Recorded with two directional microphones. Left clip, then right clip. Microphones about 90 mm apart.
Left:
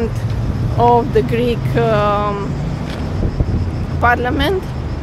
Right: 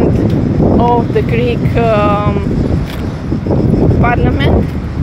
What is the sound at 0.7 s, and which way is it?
Speech, 20° left (ahead or behind).